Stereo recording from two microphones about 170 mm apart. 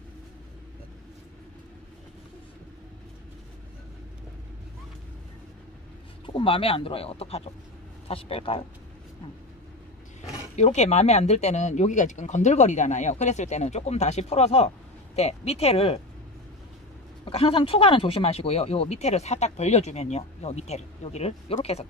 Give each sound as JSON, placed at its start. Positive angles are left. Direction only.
{"t": 6.2, "sound": "speech", "side_deg": 30}
{"t": 10.2, "sound": "speech", "side_deg": 40}
{"t": 17.2, "sound": "speech", "side_deg": 35}